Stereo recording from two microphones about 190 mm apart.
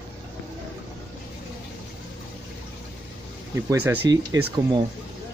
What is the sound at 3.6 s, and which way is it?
Speech, 15° right (ahead or behind).